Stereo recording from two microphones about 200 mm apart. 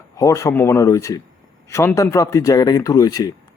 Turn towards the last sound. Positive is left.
turn(degrees=20)  # may be behind; listen again after turning